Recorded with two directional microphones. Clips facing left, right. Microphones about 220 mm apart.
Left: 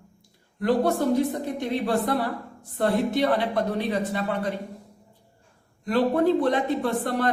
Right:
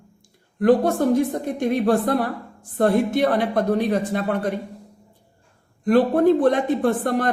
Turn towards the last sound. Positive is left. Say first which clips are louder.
# right 5 dB
turn(degrees=-50)  # may be behind; listen again after turning